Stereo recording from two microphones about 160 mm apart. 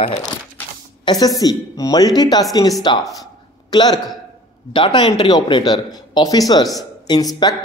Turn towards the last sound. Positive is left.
turn(degrees=25)  # may be behind; listen again after turning